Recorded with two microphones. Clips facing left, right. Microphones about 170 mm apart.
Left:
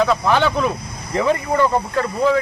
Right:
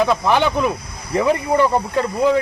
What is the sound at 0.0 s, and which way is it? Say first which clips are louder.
Speech: even; 15° right (ahead or behind).